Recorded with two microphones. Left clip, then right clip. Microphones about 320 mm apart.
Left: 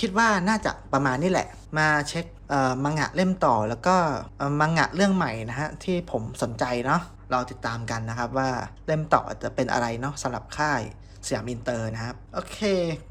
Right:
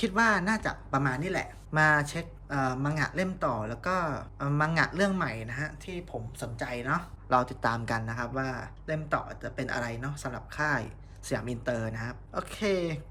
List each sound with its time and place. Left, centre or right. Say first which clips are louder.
0.0 s speech: left 4 dB; centre